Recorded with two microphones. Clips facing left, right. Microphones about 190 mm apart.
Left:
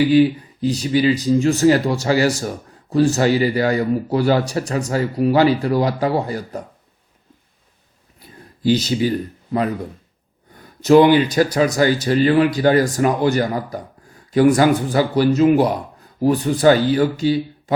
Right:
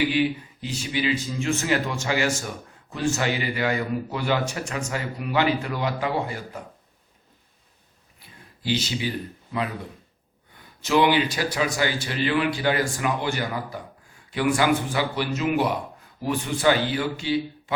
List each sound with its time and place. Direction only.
0.0 s speech: 35° left (ahead or behind)
8.2 s a sound: 40° left (ahead or behind)
8.6 s speech: 40° left (ahead or behind)